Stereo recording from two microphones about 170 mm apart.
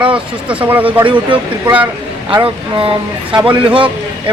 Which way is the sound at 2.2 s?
30° right (ahead or behind).